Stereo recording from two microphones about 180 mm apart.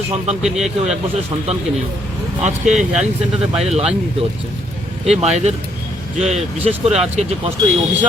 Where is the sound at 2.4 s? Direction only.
40° right (ahead or behind).